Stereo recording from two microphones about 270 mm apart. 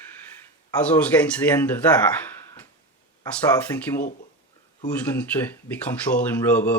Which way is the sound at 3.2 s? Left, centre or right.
Centre.